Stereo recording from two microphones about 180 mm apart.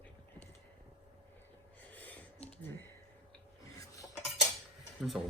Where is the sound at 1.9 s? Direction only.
10° left (ahead or behind).